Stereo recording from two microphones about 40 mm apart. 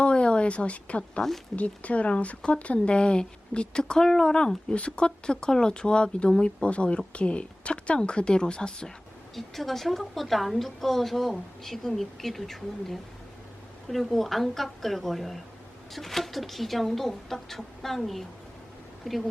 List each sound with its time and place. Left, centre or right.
0.0 s a woman's voice: left
4.7 s speech: left
9.3 s a woman's voice: centre